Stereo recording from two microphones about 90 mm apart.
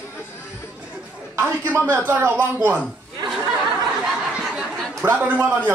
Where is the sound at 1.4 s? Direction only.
30° right (ahead or behind).